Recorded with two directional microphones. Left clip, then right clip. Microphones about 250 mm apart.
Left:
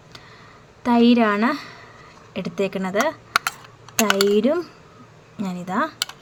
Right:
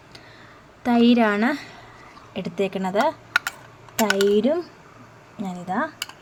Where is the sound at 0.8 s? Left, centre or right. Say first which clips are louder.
Left 1 dB; centre.